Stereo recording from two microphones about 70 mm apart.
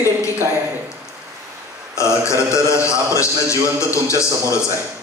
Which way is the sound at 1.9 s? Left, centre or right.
Left.